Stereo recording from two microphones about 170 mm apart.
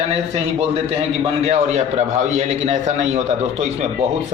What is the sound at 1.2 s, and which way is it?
A man's voice, 40° right (ahead or behind).